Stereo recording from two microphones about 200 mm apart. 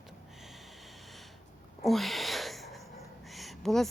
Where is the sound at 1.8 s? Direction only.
Centre (ahead or behind).